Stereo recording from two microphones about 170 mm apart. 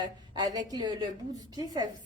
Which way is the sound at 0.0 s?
25° right (ahead or behind).